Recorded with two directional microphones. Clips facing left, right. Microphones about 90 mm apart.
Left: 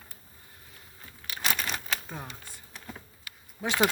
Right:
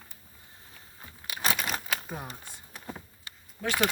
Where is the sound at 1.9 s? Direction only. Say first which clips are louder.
Right 1 dB; 10° right (ahead or behind).